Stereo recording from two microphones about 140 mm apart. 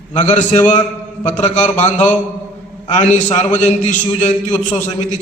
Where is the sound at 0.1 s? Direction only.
60° left (ahead or behind).